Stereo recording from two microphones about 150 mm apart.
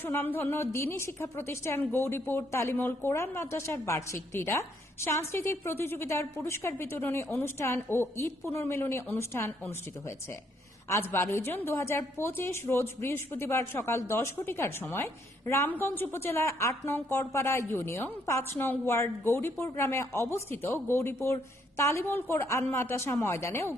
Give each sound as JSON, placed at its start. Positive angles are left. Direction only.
{"t": 0.0, "sound": "a woman's voice", "side_deg": 15}
{"t": 10.8, "sound": "a woman's voice", "side_deg": 15}